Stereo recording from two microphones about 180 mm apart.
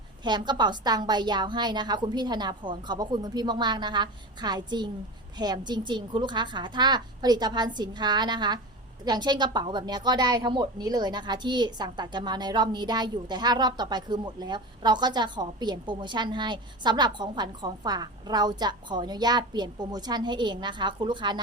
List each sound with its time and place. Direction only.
0.2 s a woman's voice: 25° right (ahead or behind)